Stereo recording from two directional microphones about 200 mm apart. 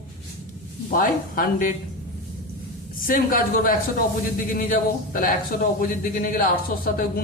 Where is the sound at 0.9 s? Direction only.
45° left (ahead or behind).